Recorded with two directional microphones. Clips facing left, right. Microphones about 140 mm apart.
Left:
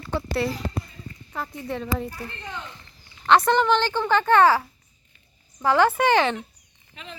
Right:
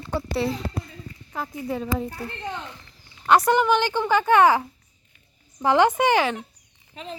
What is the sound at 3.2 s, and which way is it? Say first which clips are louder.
A woman's voice: even; 10° right (ahead or behind).